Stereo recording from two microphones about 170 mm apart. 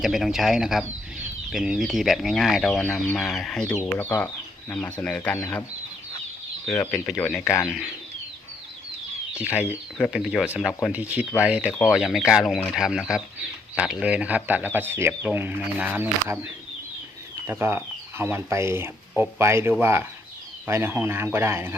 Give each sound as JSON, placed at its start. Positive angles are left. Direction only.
{"t": 0.0, "sound": "speech", "side_deg": 0}
{"t": 6.7, "sound": "speech", "side_deg": 10}
{"t": 7.6, "sound": "speech", "side_deg": -5}
{"t": 10.1, "sound": "speech", "side_deg": -5}